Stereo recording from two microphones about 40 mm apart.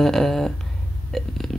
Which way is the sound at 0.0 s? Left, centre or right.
Centre.